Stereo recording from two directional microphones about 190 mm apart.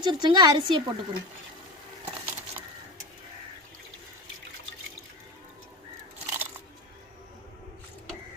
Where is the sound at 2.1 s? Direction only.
10° right (ahead or behind).